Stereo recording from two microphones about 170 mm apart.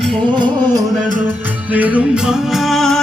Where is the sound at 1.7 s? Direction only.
10° right (ahead or behind).